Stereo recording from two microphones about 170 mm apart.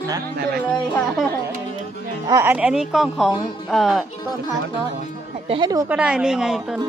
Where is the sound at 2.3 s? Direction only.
15° right (ahead or behind).